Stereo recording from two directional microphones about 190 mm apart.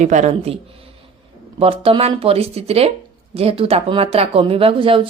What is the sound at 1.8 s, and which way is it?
Speech, 30° right (ahead or behind).